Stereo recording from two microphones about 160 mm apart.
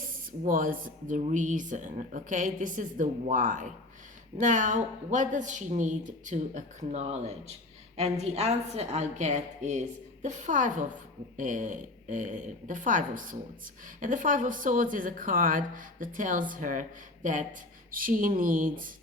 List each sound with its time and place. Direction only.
0.4 s a woman's voice: 60° right (ahead or behind)
17.9 s a woman's voice: 60° right (ahead or behind)